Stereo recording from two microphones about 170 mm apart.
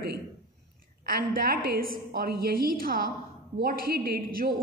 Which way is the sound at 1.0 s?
60° right (ahead or behind).